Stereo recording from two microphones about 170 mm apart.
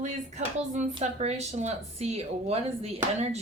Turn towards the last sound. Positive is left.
turn(degrees=-40)  # may be behind; listen again after turning